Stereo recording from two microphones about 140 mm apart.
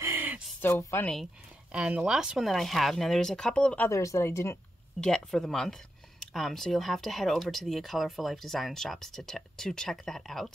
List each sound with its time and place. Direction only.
0.0 s a sound: 15° right (ahead or behind)
0.6 s a woman's voice: 15° left (ahead or behind)
1.7 s speech: 10° right (ahead or behind); by 4.6 s 20° left (ahead or behind)
5.0 s speech: 5° left (ahead or behind)